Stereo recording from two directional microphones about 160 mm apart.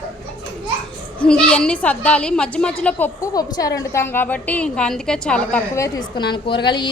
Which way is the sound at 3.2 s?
20° left (ahead or behind).